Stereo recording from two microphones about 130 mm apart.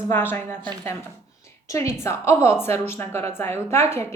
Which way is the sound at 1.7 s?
25° left (ahead or behind).